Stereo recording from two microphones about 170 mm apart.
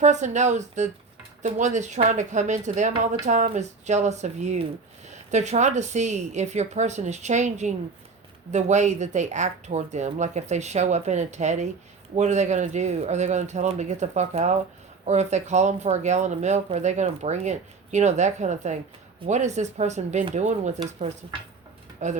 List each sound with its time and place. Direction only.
0.0 s speech: 45° right (ahead or behind)
22.0 s speech: 45° right (ahead or behind)